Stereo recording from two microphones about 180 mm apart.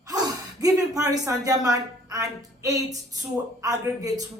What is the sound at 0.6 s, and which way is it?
Speech, 20° right (ahead or behind).